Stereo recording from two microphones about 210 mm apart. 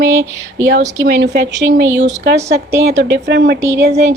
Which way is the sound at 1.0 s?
50° right (ahead or behind).